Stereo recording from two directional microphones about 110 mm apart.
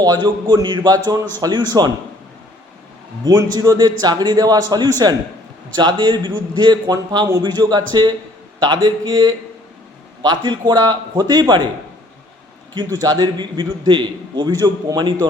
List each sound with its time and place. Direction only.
0.0 s a man's voice: 40° right (ahead or behind)
3.2 s a man's voice: 35° right (ahead or behind)
12.7 s a man's voice: 35° right (ahead or behind)